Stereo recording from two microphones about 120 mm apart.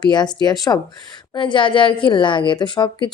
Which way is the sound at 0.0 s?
35° left (ahead or behind).